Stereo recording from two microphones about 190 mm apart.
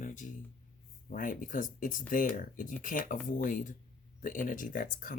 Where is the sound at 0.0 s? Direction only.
40° left (ahead or behind).